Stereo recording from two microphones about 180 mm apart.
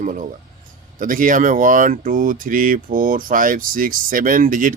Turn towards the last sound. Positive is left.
turn(degrees=-50)  # may be behind; listen again after turning